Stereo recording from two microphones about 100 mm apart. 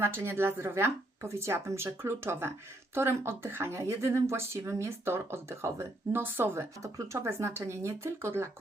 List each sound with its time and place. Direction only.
0.0 s speech: 25° right (ahead or behind)